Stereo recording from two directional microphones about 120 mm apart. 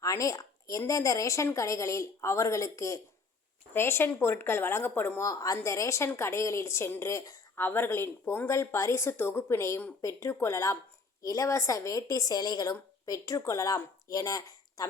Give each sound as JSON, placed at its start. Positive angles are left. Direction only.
{"t": 0.0, "sound": "a woman's voice", "side_deg": 25}
{"t": 5.2, "sound": "a woman's voice", "side_deg": 30}